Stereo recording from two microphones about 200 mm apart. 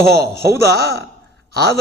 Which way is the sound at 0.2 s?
55° right (ahead or behind).